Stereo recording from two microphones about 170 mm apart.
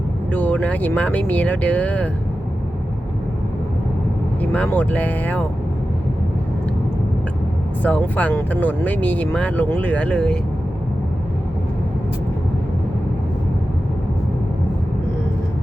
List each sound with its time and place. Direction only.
0.3 s speech: 10° left (ahead or behind)
4.4 s speech: 10° left (ahead or behind)
7.8 s speech: 10° left (ahead or behind)